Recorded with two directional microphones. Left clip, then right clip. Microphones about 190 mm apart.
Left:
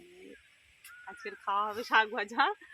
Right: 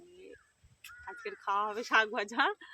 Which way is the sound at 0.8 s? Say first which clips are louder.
Right 1 dB; 20° right (ahead or behind).